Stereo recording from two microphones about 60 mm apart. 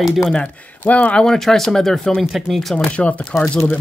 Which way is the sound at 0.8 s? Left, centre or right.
Left.